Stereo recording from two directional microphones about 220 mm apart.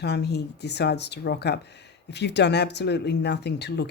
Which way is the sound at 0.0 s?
50° left (ahead or behind).